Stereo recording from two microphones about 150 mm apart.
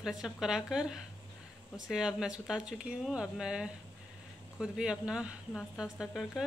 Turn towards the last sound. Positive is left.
turn(degrees=-5)  # may be behind; listen again after turning